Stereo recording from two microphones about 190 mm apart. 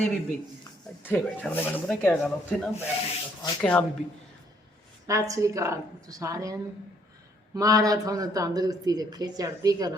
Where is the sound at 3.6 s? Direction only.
5° left (ahead or behind).